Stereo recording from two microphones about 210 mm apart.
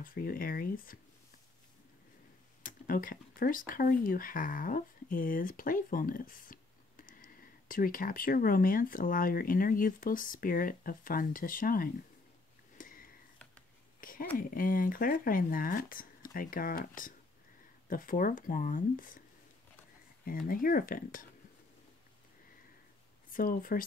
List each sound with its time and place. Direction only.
0.0 s speech: 45° left (ahead or behind)
2.6 s speech: 40° left (ahead or behind)
12.7 s a sound: 40° left (ahead or behind)
14.3 s speech: 40° left (ahead or behind)
20.2 s speech: 45° left (ahead or behind)
23.3 s speech: 40° left (ahead or behind)